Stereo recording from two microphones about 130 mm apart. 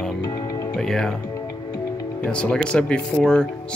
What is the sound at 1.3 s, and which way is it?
Music, 30° left (ahead or behind).